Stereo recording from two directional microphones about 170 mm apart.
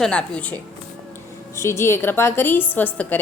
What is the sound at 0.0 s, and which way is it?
A woman's voice, 5° left (ahead or behind).